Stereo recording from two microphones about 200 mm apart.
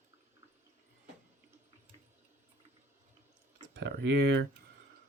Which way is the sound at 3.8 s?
65° right (ahead or behind).